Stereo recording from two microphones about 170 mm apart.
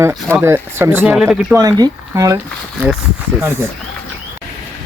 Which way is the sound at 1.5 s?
20° right (ahead or behind).